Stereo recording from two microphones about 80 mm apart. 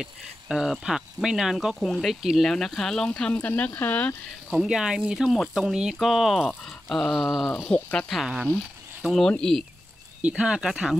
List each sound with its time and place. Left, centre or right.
0.0 s speech: centre
1.8 s speech: centre
2.5 s speech: centre
4.5 s speech: centre
7.6 s speech: centre
8.1 s speech: centre
10.2 s speech: centre